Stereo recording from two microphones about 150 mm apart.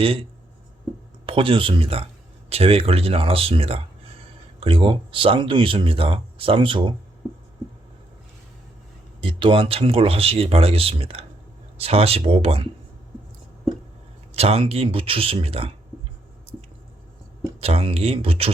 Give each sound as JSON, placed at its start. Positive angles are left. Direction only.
{"t": 0.0, "sound": "speech", "side_deg": -40}
{"t": 1.3, "sound": "speech", "side_deg": -35}
{"t": 9.2, "sound": "speech", "side_deg": -35}
{"t": 14.3, "sound": "speech", "side_deg": -40}
{"t": 17.6, "sound": "speech", "side_deg": -40}